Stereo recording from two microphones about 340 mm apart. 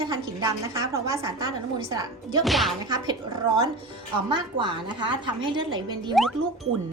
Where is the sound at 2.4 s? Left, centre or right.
Centre.